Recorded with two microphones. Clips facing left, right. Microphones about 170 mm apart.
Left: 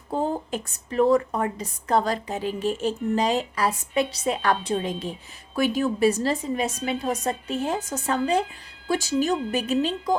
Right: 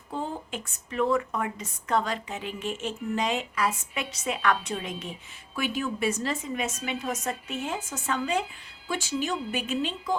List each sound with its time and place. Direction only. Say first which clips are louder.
0.1 s a woman's voice: left 7 dB; 40° left (ahead or behind)